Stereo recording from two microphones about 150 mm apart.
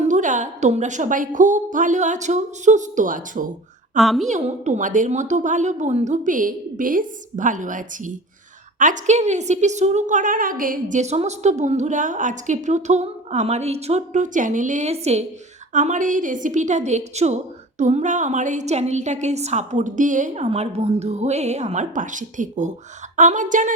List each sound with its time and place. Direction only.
0.0 s a woman's voice: 55° right (ahead or behind)
3.9 s a woman's voice: centre (ahead or behind)
4.3 s a woman's voice: 50° right (ahead or behind)